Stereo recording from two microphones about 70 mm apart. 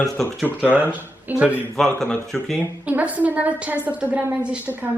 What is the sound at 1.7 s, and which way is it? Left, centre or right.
Speech, centre.